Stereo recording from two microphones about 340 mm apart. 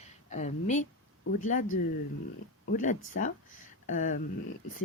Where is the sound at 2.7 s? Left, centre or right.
Left.